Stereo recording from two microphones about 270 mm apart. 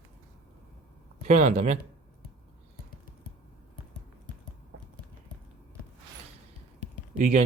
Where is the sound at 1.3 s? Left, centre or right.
Right.